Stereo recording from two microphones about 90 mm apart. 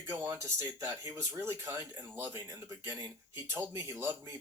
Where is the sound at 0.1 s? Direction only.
30° right (ahead or behind).